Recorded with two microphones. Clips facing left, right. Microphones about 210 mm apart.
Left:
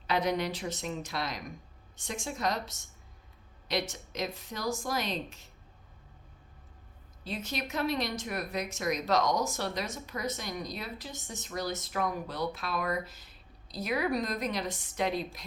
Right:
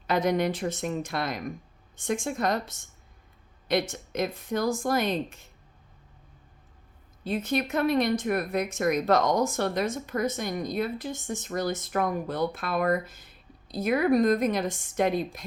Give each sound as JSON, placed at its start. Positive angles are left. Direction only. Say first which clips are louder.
{"t": 0.1, "sound": "speech", "louder": "right 5 dB", "side_deg": -45}
{"t": 7.3, "sound": "speech", "louder": "right 9 dB", "side_deg": -55}